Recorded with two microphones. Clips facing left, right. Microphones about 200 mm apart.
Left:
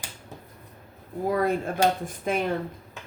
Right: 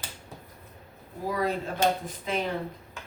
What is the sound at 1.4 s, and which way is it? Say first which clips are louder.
Speech: even; 50° left (ahead or behind).